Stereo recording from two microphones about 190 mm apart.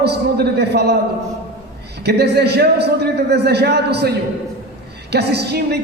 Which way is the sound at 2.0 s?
60° right (ahead or behind).